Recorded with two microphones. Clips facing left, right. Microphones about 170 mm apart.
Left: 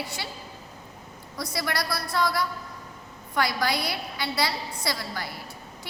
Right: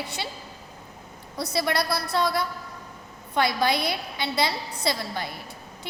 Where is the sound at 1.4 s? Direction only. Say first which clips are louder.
Right 4 dB; 25° right (ahead or behind).